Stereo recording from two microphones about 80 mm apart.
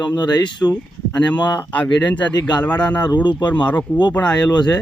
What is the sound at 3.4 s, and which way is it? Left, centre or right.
Speech, left.